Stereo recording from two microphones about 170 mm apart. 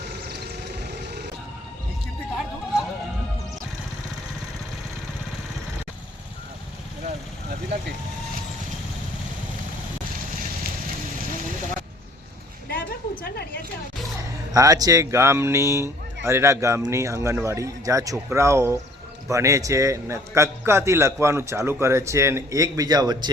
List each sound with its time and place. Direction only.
0.0 s music: 80° right
12.6 s a sound: 65° left (ahead or behind)
14.2 s speech: 20° right (ahead or behind)